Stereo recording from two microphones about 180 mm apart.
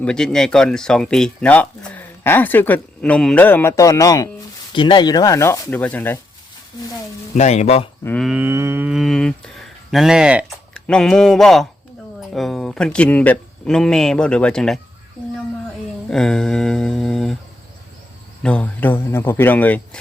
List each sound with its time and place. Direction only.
0.0 s speech: 5° left (ahead or behind)
7.3 s speech: 40° left (ahead or behind)
8.0 s speech: 5° left (ahead or behind)
8.3 s speech: 10° right (ahead or behind)
16.0 s mantra: 5° left (ahead or behind)
18.4 s speech: 5° left (ahead or behind)